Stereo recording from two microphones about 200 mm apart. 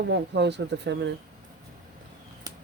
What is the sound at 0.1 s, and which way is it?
Speech, 60° right (ahead or behind).